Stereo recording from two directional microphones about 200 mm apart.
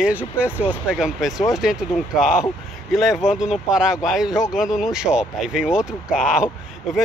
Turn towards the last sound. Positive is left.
turn(degrees=0)  # may be behind; listen again after turning